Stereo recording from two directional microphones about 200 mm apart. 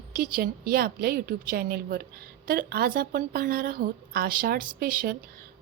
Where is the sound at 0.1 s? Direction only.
45° right (ahead or behind).